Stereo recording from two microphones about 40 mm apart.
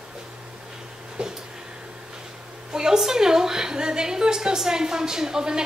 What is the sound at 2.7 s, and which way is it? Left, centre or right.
A woman's voice, centre.